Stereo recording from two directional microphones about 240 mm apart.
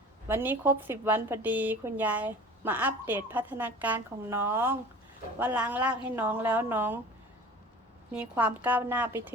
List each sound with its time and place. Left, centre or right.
0.3 s speech: centre
8.1 s speech: centre